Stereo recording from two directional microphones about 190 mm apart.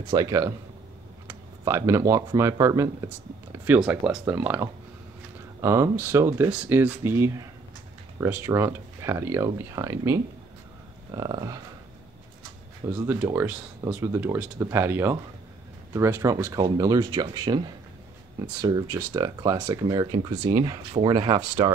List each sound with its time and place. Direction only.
0.1 s speech: 20° right (ahead or behind)
12.8 s speech: 10° right (ahead or behind)